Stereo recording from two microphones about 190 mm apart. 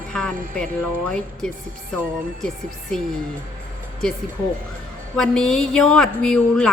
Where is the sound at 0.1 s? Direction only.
5° left (ahead or behind).